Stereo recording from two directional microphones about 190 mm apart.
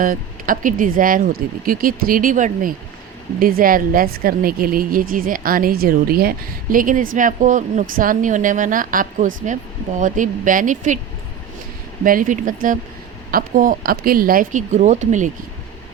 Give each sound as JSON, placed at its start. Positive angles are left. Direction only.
{"t": 0.0, "sound": "a woman's voice", "side_deg": -45}
{"t": 12.0, "sound": "a woman's voice", "side_deg": -45}